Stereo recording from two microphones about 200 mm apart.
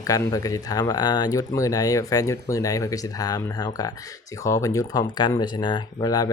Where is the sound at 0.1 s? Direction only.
15° left (ahead or behind).